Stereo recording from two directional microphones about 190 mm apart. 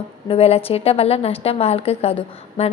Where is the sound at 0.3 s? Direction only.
30° left (ahead or behind).